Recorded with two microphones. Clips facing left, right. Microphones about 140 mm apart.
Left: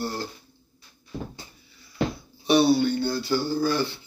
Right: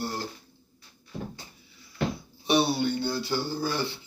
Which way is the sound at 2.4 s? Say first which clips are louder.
Left 5 dB; 20° right (ahead or behind).